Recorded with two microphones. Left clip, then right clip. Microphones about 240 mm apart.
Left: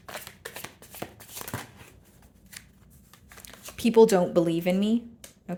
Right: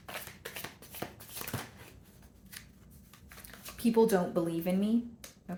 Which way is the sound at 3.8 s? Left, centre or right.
Left.